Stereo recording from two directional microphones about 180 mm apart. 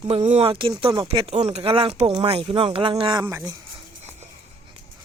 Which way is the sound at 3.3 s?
15° right (ahead or behind).